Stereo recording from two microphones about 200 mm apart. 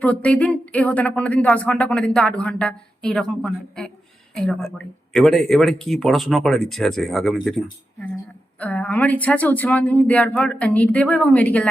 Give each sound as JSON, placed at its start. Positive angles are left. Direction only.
{"t": 0.0, "sound": "speech", "side_deg": 5}
{"t": 5.1, "sound": "speech", "side_deg": 0}